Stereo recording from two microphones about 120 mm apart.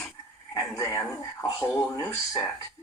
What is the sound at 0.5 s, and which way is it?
Speech, 30° left (ahead or behind).